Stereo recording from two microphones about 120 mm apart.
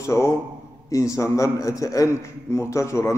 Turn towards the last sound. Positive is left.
turn(degrees=25)  # may be behind; listen again after turning